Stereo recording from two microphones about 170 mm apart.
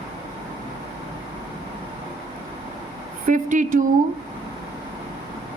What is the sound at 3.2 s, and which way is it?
Speech, 50° right (ahead or behind).